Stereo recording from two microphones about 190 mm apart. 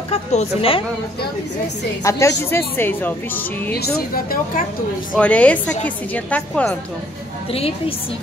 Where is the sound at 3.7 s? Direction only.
55° left (ahead or behind).